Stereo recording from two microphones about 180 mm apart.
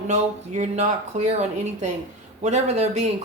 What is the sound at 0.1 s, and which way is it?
Speech, 40° right (ahead or behind).